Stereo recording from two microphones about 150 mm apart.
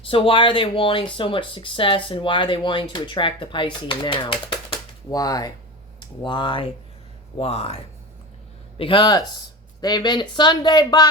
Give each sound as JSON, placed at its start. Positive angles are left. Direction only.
{"t": 0.0, "sound": "speech", "side_deg": 35}
{"t": 8.8, "sound": "speech", "side_deg": 30}